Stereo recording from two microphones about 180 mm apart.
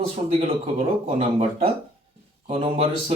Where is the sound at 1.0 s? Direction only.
35° right (ahead or behind).